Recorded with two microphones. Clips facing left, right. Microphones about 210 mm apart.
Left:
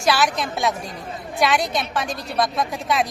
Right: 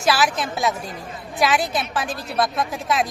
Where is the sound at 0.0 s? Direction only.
Centre (ahead or behind).